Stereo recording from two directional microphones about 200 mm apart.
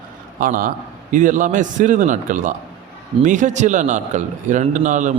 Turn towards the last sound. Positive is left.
turn(degrees=-40)  # may be behind; listen again after turning